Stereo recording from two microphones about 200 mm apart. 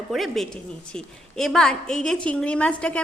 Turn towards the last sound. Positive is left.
turn(degrees=5)  # may be behind; listen again after turning